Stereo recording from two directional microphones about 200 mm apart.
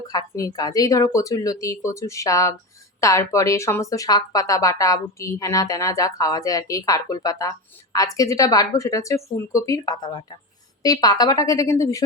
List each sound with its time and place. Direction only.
0.1 s speech: 15° left (ahead or behind)